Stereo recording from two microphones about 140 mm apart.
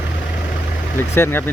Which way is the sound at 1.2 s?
15° left (ahead or behind).